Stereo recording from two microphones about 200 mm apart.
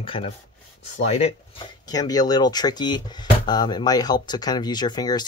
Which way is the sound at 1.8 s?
20° left (ahead or behind).